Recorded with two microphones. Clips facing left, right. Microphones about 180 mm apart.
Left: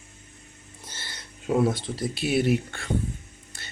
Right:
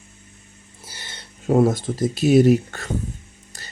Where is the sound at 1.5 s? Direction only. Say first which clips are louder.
Right 6 dB; 45° right (ahead or behind).